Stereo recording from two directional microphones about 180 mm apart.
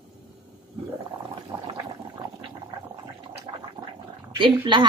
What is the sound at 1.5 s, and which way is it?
Speech, 20° right (ahead or behind).